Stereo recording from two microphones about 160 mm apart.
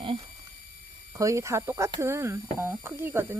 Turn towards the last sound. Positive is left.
turn(degrees=-15)  # may be behind; listen again after turning